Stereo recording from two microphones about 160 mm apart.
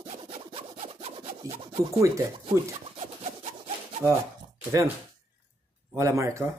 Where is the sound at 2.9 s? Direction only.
45° right (ahead or behind).